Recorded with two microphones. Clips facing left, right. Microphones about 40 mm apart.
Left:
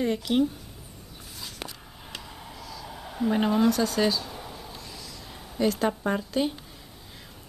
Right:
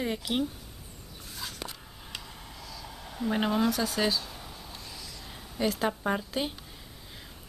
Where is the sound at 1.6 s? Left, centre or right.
Left.